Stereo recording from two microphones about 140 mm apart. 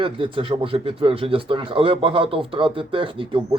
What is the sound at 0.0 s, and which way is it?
Speech, 40° right (ahead or behind).